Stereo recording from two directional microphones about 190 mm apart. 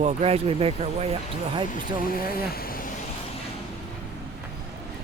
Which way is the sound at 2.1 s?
50° left (ahead or behind).